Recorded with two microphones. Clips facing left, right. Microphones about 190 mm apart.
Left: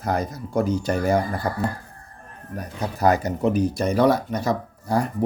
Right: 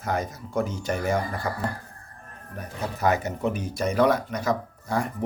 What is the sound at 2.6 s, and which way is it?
Speech, 35° left (ahead or behind).